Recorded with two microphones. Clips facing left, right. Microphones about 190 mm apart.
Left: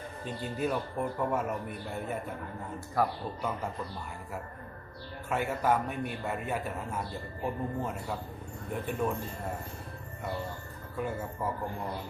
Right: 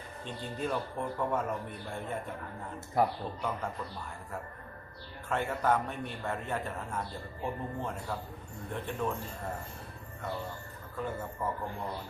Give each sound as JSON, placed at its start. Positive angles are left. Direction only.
{"t": 0.3, "sound": "speech", "side_deg": 5}
{"t": 3.0, "sound": "speech", "side_deg": -20}
{"t": 5.3, "sound": "speech", "side_deg": 10}
{"t": 10.9, "sound": "speech", "side_deg": 10}